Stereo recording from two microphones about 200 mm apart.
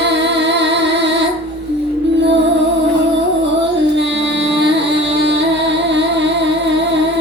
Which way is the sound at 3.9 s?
65° right (ahead or behind).